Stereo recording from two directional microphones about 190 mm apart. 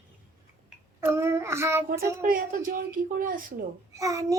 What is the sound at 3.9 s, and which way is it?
Child singing, 15° right (ahead or behind).